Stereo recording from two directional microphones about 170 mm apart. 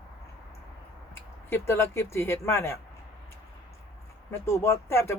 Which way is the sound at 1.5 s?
15° left (ahead or behind).